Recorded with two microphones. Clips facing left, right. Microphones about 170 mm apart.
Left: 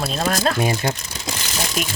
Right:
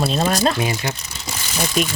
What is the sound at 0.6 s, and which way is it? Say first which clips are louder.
Speech: left 3 dB; 50° left (ahead or behind).